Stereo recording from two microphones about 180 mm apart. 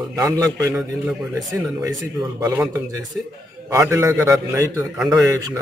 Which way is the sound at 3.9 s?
15° right (ahead or behind).